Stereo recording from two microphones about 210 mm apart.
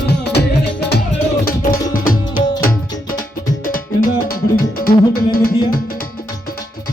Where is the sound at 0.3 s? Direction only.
50° left (ahead or behind).